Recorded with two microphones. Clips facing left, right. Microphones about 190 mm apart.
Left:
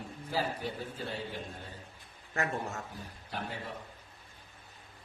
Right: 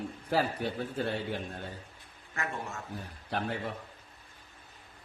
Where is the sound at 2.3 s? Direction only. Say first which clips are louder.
Left 3 dB; 40° left (ahead or behind).